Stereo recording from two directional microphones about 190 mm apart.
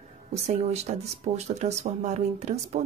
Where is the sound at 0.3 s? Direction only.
35° right (ahead or behind).